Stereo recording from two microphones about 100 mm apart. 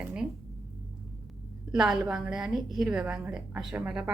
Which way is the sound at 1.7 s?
5° right (ahead or behind).